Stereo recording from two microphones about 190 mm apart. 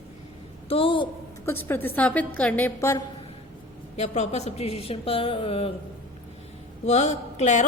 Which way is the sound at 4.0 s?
35° left (ahead or behind).